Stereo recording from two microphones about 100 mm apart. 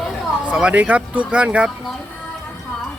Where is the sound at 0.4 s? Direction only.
10° right (ahead or behind).